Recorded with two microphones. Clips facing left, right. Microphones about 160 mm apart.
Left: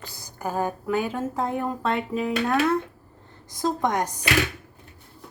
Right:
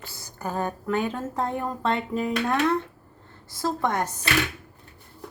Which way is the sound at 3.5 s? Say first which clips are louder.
Left 2 dB; 15° left (ahead or behind).